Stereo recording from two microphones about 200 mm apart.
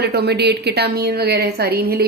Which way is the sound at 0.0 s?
55° right (ahead or behind).